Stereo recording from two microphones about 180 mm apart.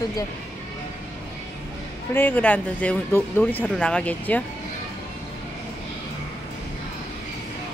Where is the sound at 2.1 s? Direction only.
10° left (ahead or behind).